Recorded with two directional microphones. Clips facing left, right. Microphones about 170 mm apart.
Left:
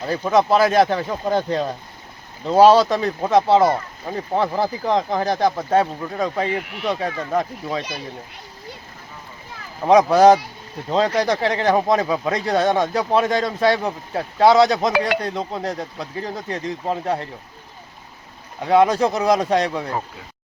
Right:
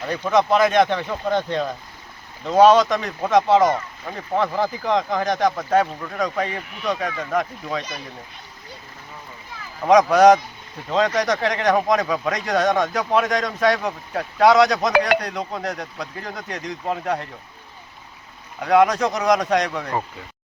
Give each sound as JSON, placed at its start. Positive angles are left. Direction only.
{"t": 0.0, "sound": "speech", "side_deg": 30}
{"t": 9.8, "sound": "speech", "side_deg": 30}
{"t": 18.6, "sound": "speech", "side_deg": 25}